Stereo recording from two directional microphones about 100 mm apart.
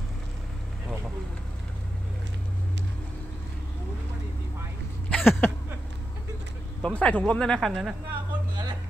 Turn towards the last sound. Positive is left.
turn(degrees=5)  # may be behind; listen again after turning